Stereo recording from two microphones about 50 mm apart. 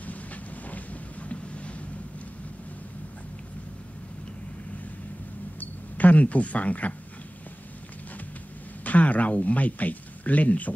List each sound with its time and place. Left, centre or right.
0.0 s vehicle: left
5.6 s speech: left
8.8 s a sound: left